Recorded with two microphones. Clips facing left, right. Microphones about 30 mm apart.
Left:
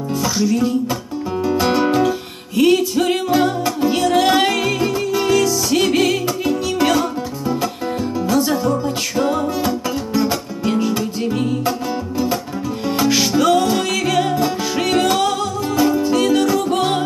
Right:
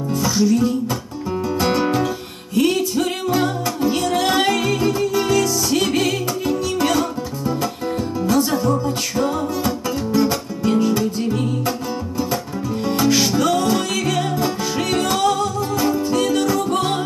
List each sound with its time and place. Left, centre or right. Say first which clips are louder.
0.1 s music: right 1 dB; centre
12.8 s music: even; centre